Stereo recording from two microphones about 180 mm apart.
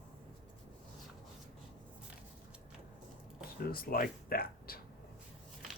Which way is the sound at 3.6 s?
55° left (ahead or behind).